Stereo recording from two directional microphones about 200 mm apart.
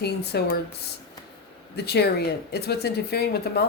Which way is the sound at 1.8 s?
55° left (ahead or behind).